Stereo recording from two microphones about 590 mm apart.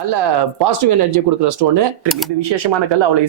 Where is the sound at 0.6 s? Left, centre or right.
Right.